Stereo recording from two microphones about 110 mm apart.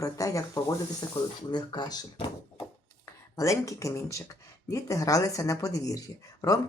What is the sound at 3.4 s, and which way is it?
Speech, 30° left (ahead or behind).